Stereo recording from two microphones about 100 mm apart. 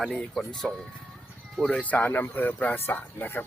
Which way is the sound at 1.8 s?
15° left (ahead or behind).